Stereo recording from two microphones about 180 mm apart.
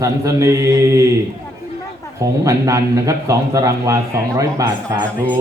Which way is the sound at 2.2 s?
15° right (ahead or behind).